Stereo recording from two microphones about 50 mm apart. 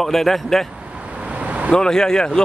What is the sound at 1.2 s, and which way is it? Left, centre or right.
Vehicle, right.